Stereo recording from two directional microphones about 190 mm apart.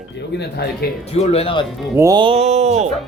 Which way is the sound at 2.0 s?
20° right (ahead or behind).